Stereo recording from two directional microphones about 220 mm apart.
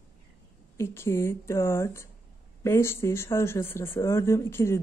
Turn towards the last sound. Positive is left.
turn(degrees=10)  # may be behind; listen again after turning